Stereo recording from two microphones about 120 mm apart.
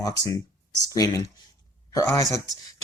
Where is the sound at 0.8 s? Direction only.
30° left (ahead or behind).